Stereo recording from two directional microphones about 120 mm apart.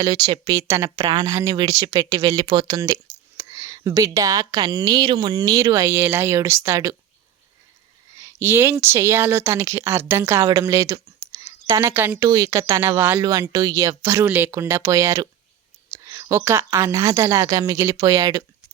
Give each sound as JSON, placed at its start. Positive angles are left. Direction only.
{"t": 0.0, "sound": "speech", "side_deg": -35}
{"t": 2.3, "sound": "speech", "side_deg": -45}
{"t": 8.1, "sound": "speech", "side_deg": -25}
{"t": 13.1, "sound": "a woman's voice", "side_deg": -35}